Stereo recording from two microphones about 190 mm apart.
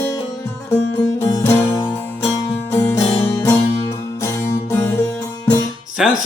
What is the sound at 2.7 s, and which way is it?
Music, 15° left (ahead or behind).